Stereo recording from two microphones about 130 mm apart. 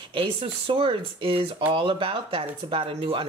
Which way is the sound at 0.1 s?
40° right (ahead or behind).